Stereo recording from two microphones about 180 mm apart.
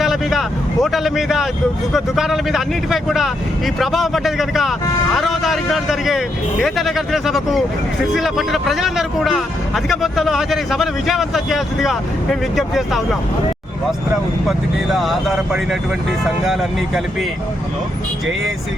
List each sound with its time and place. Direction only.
0.0 s a man's voice: centre (ahead or behind)
14.9 s speech: centre (ahead or behind)